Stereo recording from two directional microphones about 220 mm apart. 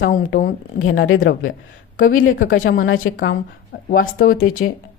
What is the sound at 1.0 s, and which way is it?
Speech, 65° left (ahead or behind).